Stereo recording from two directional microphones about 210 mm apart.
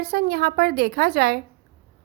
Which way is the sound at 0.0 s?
50° right (ahead or behind).